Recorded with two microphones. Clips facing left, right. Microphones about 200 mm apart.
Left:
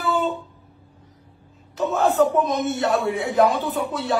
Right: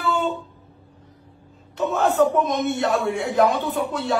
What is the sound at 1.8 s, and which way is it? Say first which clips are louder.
A man's voice: even; centre (ahead or behind).